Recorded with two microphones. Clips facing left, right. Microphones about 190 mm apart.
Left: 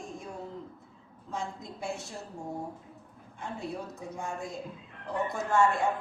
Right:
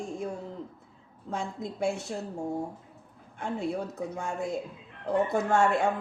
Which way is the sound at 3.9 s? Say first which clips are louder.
Right 5 dB; 65° right (ahead or behind).